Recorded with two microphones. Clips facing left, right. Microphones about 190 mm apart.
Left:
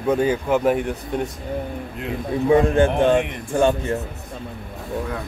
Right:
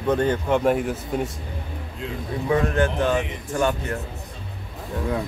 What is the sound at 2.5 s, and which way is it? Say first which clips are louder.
Speech: left 5 dB; 25° left (ahead or behind).